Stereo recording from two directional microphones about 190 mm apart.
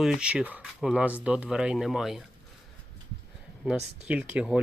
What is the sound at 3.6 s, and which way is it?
Speech, 5° right (ahead or behind).